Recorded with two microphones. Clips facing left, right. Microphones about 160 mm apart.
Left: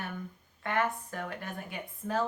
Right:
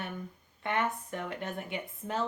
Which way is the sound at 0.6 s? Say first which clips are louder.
Left 1 dB; 20° right (ahead or behind).